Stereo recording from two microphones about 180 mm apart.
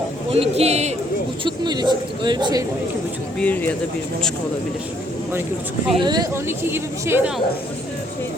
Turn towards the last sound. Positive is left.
turn(degrees=-5)  # may be behind; listen again after turning